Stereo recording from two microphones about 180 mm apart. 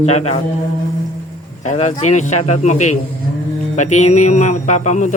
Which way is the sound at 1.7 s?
40° left (ahead or behind).